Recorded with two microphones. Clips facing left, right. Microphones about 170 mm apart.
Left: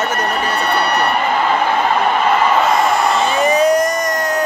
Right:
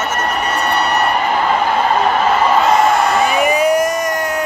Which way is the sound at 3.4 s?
10° right (ahead or behind).